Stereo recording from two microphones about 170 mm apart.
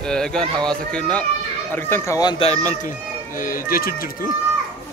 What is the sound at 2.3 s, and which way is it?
Speech, 40° left (ahead or behind).